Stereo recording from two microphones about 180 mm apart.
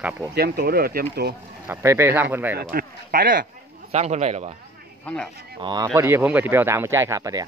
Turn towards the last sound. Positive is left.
turn(degrees=-20)  # may be behind; listen again after turning